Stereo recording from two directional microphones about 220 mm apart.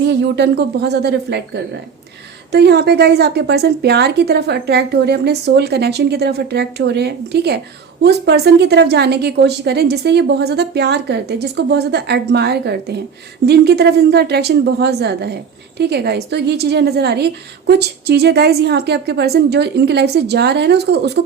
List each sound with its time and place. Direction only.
0.1 s a woman's voice: 50° right (ahead or behind)